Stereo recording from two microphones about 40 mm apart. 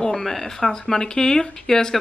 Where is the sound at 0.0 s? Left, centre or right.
Centre.